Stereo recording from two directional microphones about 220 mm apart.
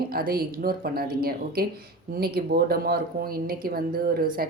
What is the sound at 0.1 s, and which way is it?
A woman's voice, 40° right (ahead or behind).